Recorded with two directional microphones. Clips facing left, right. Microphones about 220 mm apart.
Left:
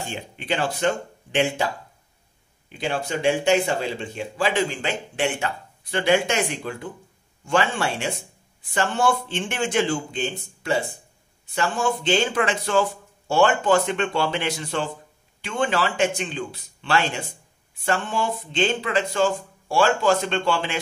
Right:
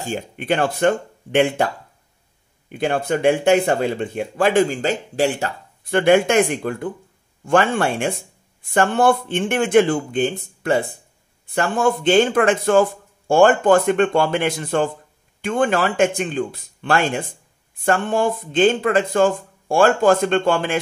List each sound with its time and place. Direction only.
0.0 s speech: 50° right (ahead or behind)
2.7 s speech: 55° right (ahead or behind); by 5.5 s 40° right (ahead or behind)
5.9 s speech: 55° right (ahead or behind)